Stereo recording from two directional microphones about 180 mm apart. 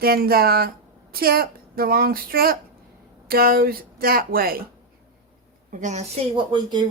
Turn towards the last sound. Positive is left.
turn(degrees=-25)  # may be behind; listen again after turning